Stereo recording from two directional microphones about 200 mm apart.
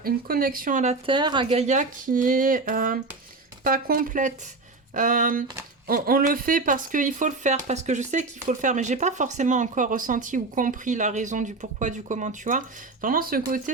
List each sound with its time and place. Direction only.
0.0 s speech: 45° right (ahead or behind)